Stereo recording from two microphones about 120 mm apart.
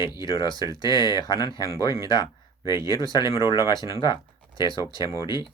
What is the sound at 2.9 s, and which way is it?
Speech, 40° left (ahead or behind).